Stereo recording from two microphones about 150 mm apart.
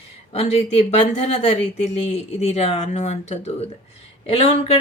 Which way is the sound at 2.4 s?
45° left (ahead or behind).